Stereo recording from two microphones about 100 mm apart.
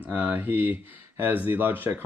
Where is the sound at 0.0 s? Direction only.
15° right (ahead or behind).